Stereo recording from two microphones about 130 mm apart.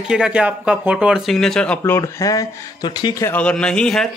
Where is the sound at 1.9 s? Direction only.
25° left (ahead or behind).